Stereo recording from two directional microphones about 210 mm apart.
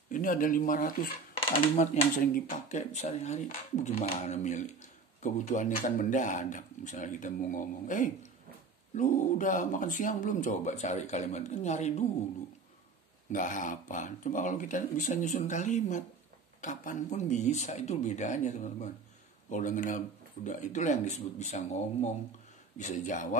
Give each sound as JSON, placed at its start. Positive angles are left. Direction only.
{"t": 0.1, "sound": "speech", "side_deg": 40}
{"t": 1.3, "sound": "speech", "side_deg": 25}
{"t": 2.1, "sound": "speech", "side_deg": 40}
{"t": 13.3, "sound": "speech", "side_deg": 35}